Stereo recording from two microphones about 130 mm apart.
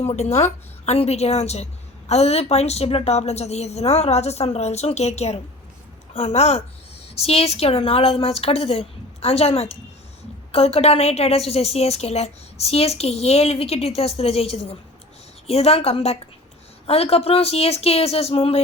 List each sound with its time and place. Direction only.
0.0 s a woman's voice: 55° left (ahead or behind)